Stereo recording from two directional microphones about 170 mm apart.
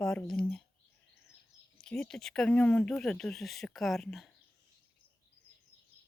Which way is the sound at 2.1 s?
5° left (ahead or behind).